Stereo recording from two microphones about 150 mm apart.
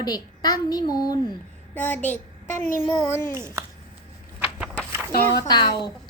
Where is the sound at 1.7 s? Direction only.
10° left (ahead or behind).